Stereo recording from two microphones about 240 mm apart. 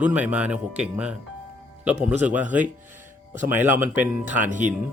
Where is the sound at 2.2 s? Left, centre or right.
Centre.